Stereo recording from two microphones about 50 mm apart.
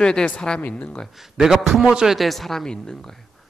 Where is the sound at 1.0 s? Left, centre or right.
Centre.